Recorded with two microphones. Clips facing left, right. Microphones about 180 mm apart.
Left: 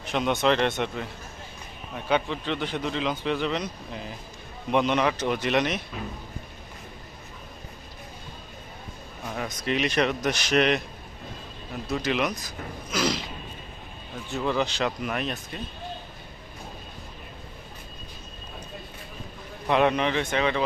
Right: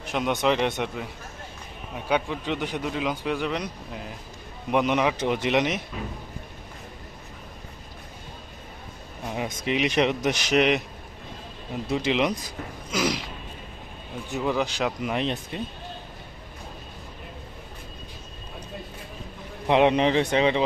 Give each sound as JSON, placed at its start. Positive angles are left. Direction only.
{"t": 0.1, "sound": "speech", "side_deg": -10}
{"t": 9.2, "sound": "speech", "side_deg": -15}
{"t": 11.9, "sound": "speech", "side_deg": -20}
{"t": 12.9, "sound": "speech", "side_deg": -15}
{"t": 14.3, "sound": "speech", "side_deg": -15}
{"t": 19.6, "sound": "speech", "side_deg": -25}